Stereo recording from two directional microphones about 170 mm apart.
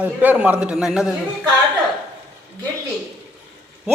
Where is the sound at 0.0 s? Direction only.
10° right (ahead or behind).